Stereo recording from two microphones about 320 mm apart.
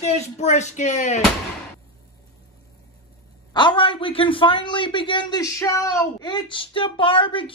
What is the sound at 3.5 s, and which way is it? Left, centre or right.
A man's voice, centre.